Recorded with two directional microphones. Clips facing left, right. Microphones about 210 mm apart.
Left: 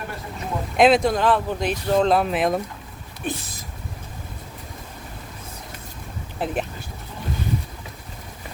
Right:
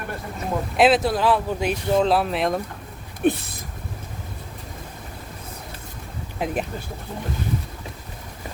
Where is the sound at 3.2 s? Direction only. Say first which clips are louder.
Right 9 dB; 60° right (ahead or behind).